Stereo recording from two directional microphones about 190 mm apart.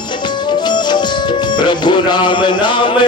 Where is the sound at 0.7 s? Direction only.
25° left (ahead or behind).